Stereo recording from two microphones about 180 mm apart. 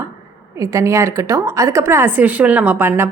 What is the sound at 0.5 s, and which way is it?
A woman's voice, 15° right (ahead or behind).